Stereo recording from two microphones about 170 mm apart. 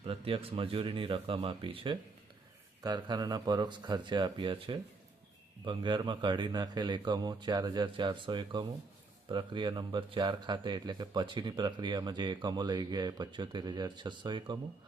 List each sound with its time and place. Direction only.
0.0 s speech: 30° right (ahead or behind)